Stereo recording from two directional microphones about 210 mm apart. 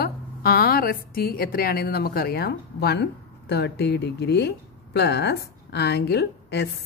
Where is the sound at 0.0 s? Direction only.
45° left (ahead or behind).